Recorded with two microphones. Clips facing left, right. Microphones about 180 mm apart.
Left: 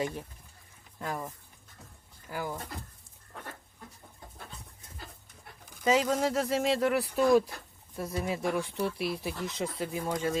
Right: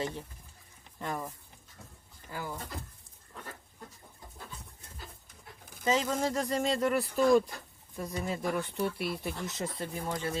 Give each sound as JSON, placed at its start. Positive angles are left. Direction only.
{"t": 0.0, "sound": "speech", "side_deg": 10}
{"t": 2.3, "sound": "speech", "side_deg": 15}
{"t": 5.8, "sound": "speech", "side_deg": 10}